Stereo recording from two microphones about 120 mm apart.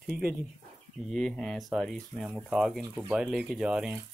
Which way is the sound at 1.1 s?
5° left (ahead or behind).